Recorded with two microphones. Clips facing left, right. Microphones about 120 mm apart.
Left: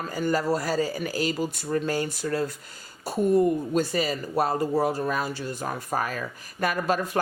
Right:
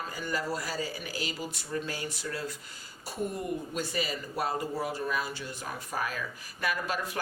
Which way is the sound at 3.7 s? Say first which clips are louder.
Left 8 dB; 40° left (ahead or behind).